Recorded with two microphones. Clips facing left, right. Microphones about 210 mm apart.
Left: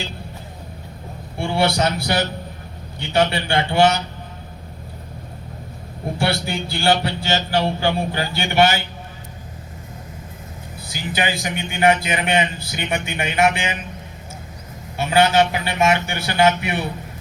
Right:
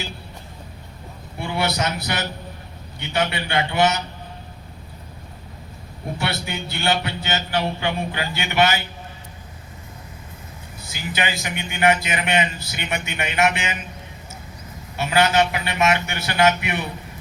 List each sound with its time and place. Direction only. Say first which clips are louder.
1.4 s a man's voice: left 5 dB; 30° left (ahead or behind)
6.1 s speech: left 5 dB; 30° left (ahead or behind)
11.2 s speech: left 3 dB; 30° left (ahead or behind)
14.9 s a man's voice: left 2 dB; 30° left (ahead or behind)